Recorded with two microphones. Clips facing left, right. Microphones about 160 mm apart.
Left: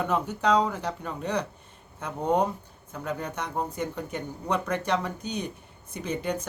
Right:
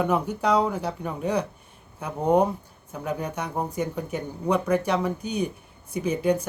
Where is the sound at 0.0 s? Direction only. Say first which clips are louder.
Right 2 dB; 10° right (ahead or behind).